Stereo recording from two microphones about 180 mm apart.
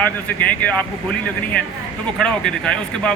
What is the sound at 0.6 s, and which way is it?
Speech, 10° left (ahead or behind).